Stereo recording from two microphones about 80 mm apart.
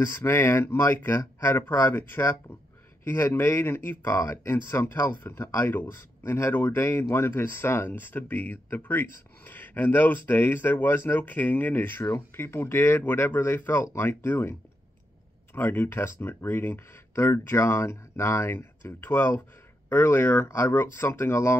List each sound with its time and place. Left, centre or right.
0.0 s speech: left
15.5 s speech: left